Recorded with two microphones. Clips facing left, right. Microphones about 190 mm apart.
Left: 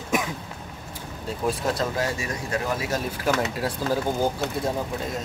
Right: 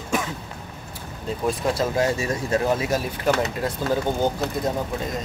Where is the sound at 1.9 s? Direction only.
25° right (ahead or behind).